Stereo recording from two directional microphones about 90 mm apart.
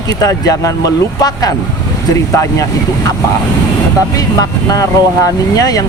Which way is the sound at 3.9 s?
40° left (ahead or behind).